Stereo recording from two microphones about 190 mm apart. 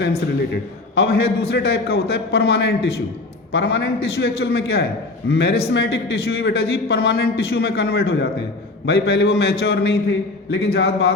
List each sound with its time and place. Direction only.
0.9 s a man's voice: 55° left (ahead or behind)